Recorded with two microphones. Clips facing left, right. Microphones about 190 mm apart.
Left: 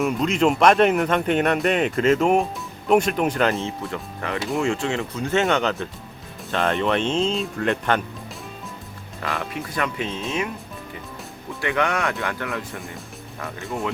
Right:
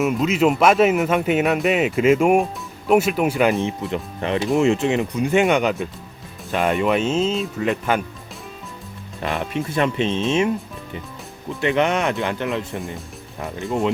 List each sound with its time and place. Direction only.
0.0 s speech: 5° right (ahead or behind)
9.2 s speech: 20° right (ahead or behind)
11.6 s speech: 20° right (ahead or behind)